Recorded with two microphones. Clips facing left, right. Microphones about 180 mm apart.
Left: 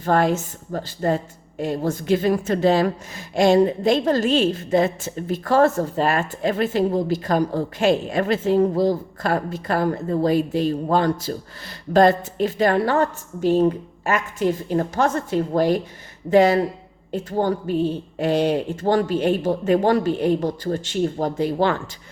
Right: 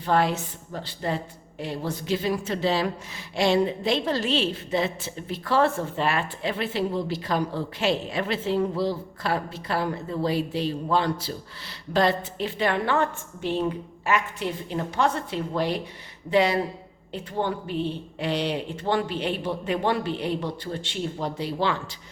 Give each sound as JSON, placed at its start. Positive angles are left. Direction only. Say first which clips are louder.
{"t": 0.0, "sound": "a woman's voice", "louder": "left 4 dB", "side_deg": 45}